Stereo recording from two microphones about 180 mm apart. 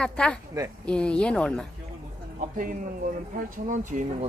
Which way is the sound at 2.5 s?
45° right (ahead or behind).